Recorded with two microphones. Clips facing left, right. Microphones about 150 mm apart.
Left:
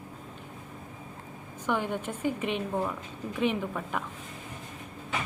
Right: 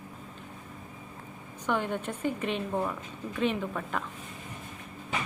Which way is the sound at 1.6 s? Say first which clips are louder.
Even; 10° left (ahead or behind).